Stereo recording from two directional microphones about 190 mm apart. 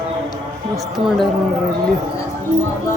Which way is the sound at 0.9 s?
Centre (ahead or behind).